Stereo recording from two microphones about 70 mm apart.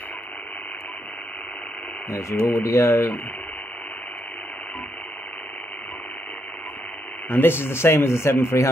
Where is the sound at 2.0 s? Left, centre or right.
Left.